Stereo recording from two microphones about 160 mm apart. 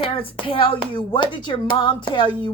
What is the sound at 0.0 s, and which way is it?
Speech, 35° left (ahead or behind).